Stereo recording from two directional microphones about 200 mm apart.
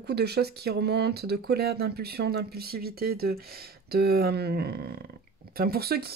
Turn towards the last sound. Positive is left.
turn(degrees=-50)  # may be behind; listen again after turning